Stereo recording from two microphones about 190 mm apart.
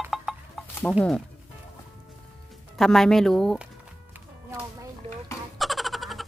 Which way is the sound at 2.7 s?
Centre (ahead or behind).